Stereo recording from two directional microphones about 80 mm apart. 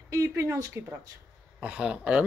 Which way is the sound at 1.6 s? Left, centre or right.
Centre.